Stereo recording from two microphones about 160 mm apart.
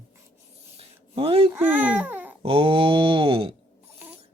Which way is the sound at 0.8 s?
35° right (ahead or behind).